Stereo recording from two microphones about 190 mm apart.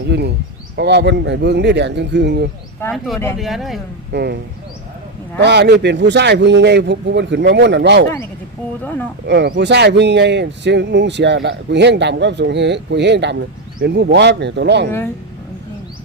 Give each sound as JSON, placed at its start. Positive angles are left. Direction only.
{"t": 0.1, "sound": "speech", "side_deg": -65}
{"t": 2.8, "sound": "speech", "side_deg": 10}
{"t": 3.3, "sound": "speech", "side_deg": 0}
{"t": 4.1, "sound": "speech", "side_deg": -60}
{"t": 5.4, "sound": "speech", "side_deg": -65}
{"t": 8.8, "sound": "speech", "side_deg": 10}
{"t": 9.2, "sound": "speech", "side_deg": -60}